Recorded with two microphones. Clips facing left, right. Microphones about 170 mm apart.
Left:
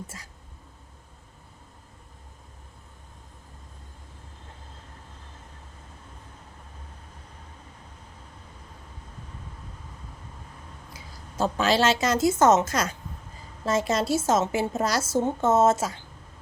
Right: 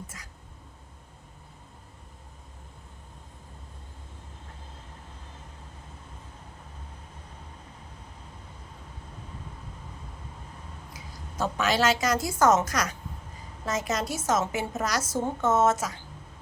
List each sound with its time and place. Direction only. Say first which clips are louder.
10.9 s a woman's voice: left 3 dB; 30° left (ahead or behind)